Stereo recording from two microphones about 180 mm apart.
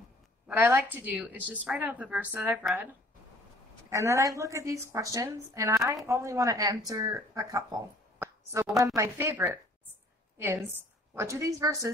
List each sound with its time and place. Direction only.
0.5 s a woman's voice: 15° right (ahead or behind)
3.9 s a woman's voice: 15° right (ahead or behind)
8.2 s plop: 15° right (ahead or behind)
8.7 s a woman's voice: 15° right (ahead or behind)